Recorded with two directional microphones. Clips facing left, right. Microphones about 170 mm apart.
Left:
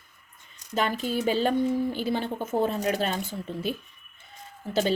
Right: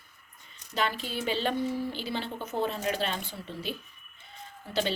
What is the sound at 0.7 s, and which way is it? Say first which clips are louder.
A woman's voice: left 5 dB; 45° left (ahead or behind).